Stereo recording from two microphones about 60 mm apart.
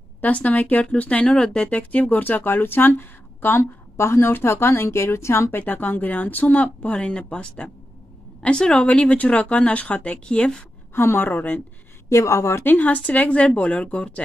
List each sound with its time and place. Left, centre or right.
0.2 s speech: left
1.3 s a woman's voice: centre
1.6 s speech: left
5.6 s a woman's voice: left
11.0 s speech: left
12.1 s a woman's voice: left
12.6 s speech: left